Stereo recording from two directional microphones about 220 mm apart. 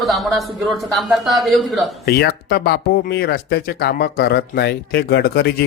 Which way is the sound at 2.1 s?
45° left (ahead or behind).